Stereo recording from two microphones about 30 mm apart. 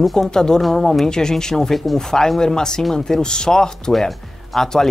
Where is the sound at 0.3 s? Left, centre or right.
Left.